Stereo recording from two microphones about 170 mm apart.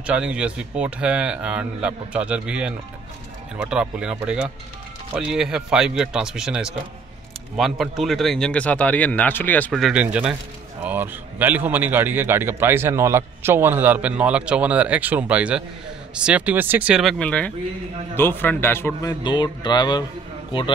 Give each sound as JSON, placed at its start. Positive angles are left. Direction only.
{"t": 0.0, "sound": "a man's voice", "side_deg": -5}
{"t": 19.2, "sound": "speech", "side_deg": 25}